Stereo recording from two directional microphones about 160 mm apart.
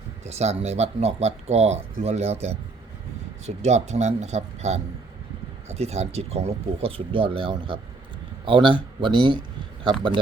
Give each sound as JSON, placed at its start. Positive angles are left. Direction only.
{"t": 0.3, "sound": "speech", "side_deg": -40}